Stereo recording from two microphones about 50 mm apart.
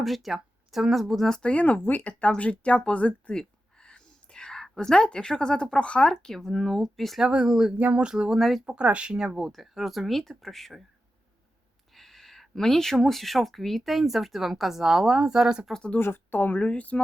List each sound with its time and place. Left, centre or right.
0.0 s speech: centre
1.3 s speech: centre
1.5 s speech: left
1.8 s a sound: left; by 4.7 s centre
4.8 s speech: centre
6.2 s speech: centre
7.2 s speech: centre
8.4 s speech: centre
8.6 s speech: right
9.1 s speech: centre
11.9 s speech: centre
15.7 s speech: left
16.0 s speech: left
16.6 s speech: left